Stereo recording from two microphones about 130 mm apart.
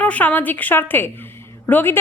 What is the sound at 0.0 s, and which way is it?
Speech, 10° left (ahead or behind).